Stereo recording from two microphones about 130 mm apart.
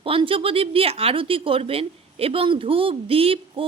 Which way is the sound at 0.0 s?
45° right (ahead or behind).